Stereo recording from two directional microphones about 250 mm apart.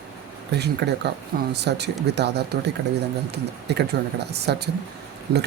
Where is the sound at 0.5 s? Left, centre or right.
Right.